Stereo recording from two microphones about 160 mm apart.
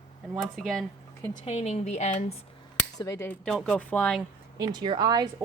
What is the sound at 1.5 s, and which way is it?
Speech, 40° left (ahead or behind).